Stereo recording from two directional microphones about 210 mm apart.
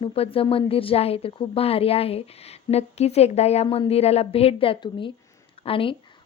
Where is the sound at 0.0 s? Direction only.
25° left (ahead or behind).